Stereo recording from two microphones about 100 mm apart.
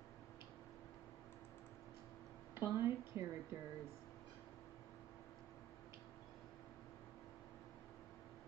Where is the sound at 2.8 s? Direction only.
25° right (ahead or behind).